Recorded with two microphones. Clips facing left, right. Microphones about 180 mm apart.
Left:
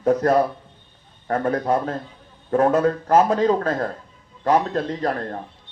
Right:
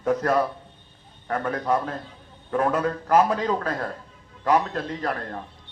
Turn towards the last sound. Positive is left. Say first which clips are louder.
# left 4 dB
turn(degrees=35)  # may be behind; listen again after turning